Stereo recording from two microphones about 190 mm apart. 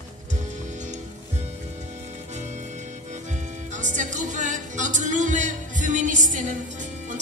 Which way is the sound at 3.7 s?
40° right (ahead or behind).